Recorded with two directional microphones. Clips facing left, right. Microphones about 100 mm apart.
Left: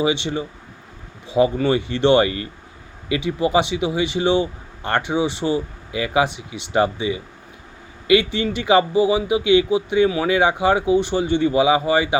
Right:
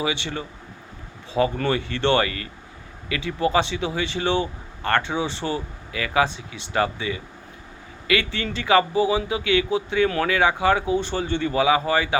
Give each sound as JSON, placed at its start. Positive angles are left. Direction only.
{"t": 0.0, "sound": "speech", "side_deg": 20}